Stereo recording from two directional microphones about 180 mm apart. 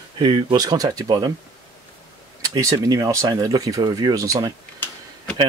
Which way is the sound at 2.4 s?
20° right (ahead or behind).